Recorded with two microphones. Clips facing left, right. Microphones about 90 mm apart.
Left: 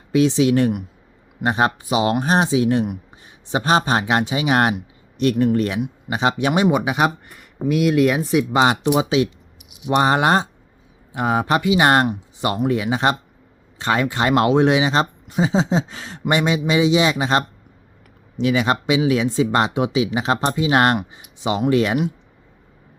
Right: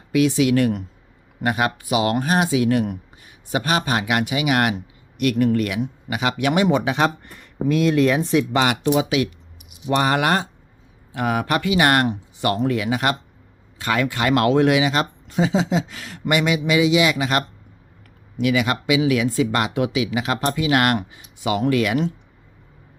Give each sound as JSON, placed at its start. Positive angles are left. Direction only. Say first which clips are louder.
{"t": 0.1, "sound": "speech", "louder": "left 1 dB", "side_deg": 25}
{"t": 8.5, "sound": "speech", "louder": "left 4 dB", "side_deg": 20}